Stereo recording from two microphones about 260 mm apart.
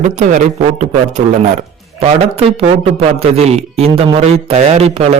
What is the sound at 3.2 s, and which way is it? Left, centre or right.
Speech, right.